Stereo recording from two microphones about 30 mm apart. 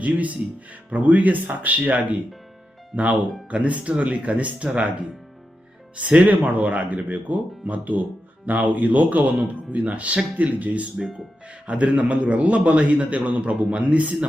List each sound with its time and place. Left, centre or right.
0.0 s a man's voice: right
6.1 s speech: right
10.3 s speech: right
11.4 s a man's voice: right